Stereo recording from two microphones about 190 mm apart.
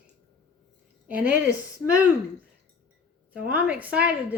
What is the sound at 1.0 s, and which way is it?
Speech, 10° right (ahead or behind).